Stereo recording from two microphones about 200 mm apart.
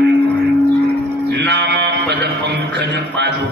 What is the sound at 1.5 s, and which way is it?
Music, 60° right (ahead or behind).